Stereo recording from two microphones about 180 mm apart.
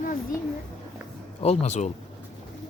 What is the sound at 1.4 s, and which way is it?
Speech, 35° left (ahead or behind).